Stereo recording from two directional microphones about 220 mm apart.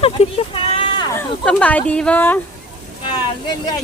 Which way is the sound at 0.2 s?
30° left (ahead or behind).